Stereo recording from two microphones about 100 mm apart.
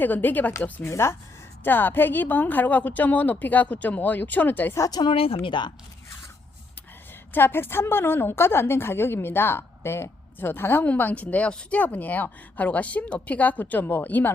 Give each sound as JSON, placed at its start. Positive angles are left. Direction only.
{"t": 0.0, "sound": "a woman's voice", "side_deg": 20}
{"t": 0.9, "sound": "a woman's voice", "side_deg": 30}
{"t": 4.8, "sound": "speech", "side_deg": 40}
{"t": 5.1, "sound": "speech", "side_deg": 70}
{"t": 7.3, "sound": "a woman's voice", "side_deg": 20}